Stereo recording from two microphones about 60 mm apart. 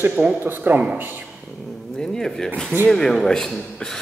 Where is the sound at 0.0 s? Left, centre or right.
Right.